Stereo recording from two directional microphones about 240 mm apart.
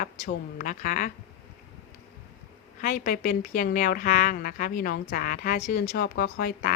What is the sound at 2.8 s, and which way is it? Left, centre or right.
A woman's voice, left.